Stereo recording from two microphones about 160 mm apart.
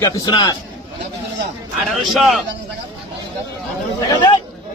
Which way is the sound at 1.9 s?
Centre (ahead or behind).